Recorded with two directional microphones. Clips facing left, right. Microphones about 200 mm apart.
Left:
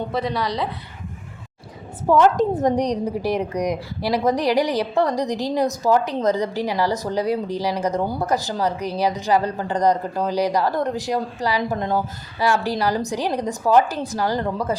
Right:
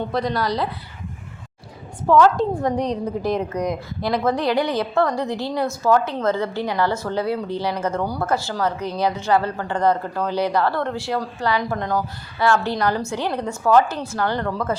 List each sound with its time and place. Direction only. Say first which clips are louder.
0.1 s a woman's voice: right 1 dB; 5° left (ahead or behind)
2.0 s a woman's voice: even; 20° left (ahead or behind)
12.4 s a woman's voice: right 1 dB; 10° left (ahead or behind)